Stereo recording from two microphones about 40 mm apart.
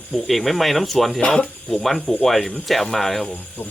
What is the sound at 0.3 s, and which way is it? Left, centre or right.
Speech, centre.